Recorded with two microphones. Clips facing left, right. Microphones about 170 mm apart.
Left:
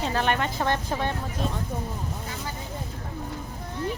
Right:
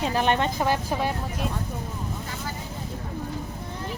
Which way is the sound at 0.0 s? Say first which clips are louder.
Right 2 dB; 15° right (ahead or behind).